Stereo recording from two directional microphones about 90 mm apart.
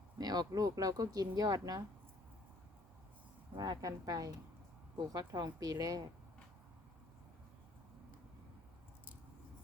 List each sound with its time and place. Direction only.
0.2 s speech: 45° right (ahead or behind)
3.6 s speech: 45° right (ahead or behind)